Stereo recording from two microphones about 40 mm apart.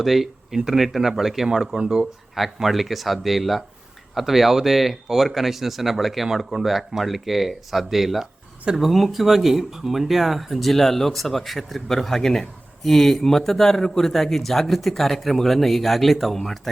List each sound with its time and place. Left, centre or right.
0.0 s speech: centre
1.8 s speech: right
2.3 s speech: centre